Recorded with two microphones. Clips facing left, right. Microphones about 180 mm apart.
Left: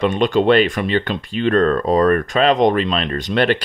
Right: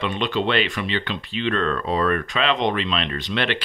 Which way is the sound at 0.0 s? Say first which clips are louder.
Left 8 dB; 45° left (ahead or behind).